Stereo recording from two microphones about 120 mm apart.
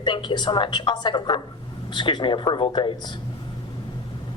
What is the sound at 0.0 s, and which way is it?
A woman's voice, 40° left (ahead or behind).